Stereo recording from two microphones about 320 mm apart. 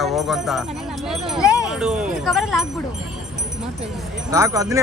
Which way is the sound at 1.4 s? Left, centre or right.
Centre.